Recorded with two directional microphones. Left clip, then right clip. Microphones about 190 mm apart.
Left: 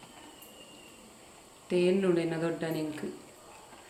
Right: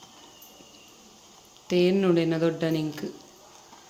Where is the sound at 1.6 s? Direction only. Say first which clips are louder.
Right 4 dB; 65° right (ahead or behind).